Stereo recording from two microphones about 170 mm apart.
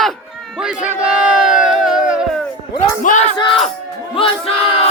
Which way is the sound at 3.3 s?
30° left (ahead or behind).